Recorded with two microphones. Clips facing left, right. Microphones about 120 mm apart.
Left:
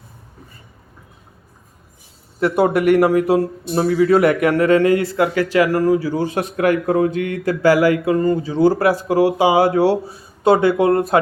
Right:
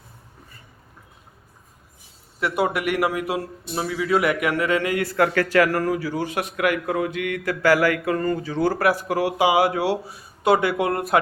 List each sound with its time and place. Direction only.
2.9 s speech: 35° left (ahead or behind)
5.1 s speech: 20° left (ahead or behind)
6.0 s speech: 40° left (ahead or behind)
7.6 s speech: 15° left (ahead or behind)
8.7 s speech: 35° left (ahead or behind)